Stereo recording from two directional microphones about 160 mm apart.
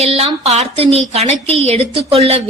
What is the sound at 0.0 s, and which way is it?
A woman's voice, 40° right (ahead or behind).